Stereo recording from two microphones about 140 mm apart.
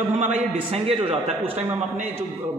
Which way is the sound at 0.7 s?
45° right (ahead or behind).